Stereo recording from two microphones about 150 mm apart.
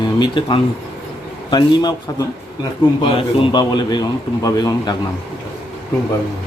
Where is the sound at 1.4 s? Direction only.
30° left (ahead or behind).